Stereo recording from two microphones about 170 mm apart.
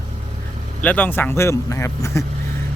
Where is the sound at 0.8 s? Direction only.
10° left (ahead or behind).